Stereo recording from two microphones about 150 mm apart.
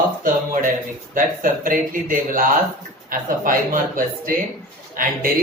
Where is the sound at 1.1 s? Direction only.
65° right (ahead or behind).